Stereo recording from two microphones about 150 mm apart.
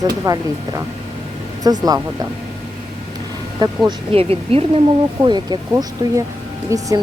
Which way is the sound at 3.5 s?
30° right (ahead or behind).